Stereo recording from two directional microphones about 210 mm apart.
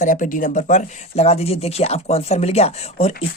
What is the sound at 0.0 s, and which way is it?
Speech, 40° left (ahead or behind).